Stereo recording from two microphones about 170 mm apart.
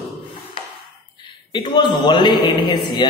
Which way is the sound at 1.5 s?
25° left (ahead or behind).